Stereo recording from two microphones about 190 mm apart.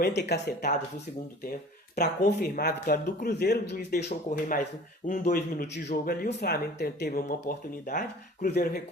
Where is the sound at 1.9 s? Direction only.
55° left (ahead or behind).